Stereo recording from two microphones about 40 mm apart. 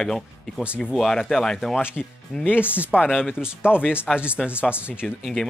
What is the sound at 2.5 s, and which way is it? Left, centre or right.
Speech, left.